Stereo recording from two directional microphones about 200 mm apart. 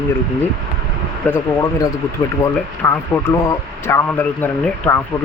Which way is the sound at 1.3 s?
15° left (ahead or behind).